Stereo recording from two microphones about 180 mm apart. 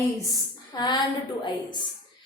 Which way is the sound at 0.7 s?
25° left (ahead or behind).